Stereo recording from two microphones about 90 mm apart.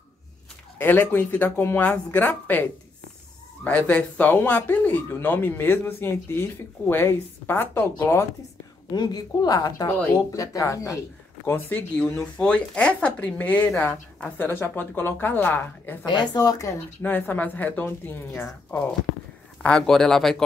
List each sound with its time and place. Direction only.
0.7 s speech: 20° left (ahead or behind)
8.9 s a woman's voice: 50° left (ahead or behind)
9.8 s speech: 20° left (ahead or behind)
10.3 s speech: 40° left (ahead or behind)
12.2 s speech: 10° left (ahead or behind)
16.1 s a woman's voice: 50° left (ahead or behind)
17.0 s speech: 20° left (ahead or behind)
19.6 s speech: 10° left (ahead or behind)